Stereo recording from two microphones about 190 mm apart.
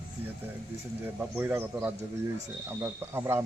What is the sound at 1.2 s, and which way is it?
A man's voice, 10° right (ahead or behind).